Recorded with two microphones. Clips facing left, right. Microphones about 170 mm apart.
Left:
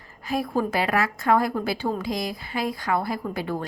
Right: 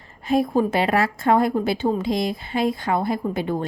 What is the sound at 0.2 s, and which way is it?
A woman's voice, 25° right (ahead or behind).